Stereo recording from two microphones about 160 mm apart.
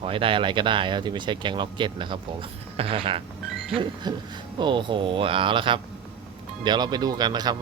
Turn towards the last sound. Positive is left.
turn(degrees=-25)  # may be behind; listen again after turning